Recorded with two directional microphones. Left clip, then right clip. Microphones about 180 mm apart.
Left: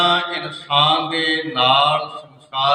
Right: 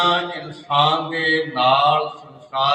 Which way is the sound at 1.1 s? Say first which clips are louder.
Even; 25° left (ahead or behind).